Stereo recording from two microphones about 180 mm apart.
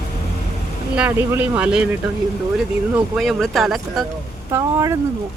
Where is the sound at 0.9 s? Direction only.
10° right (ahead or behind).